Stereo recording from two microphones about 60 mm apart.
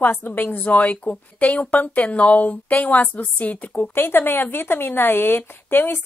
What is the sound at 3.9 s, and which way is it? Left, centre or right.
Speech, left.